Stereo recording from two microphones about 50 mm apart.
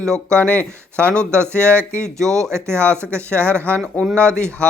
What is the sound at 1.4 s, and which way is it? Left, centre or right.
Speech, right.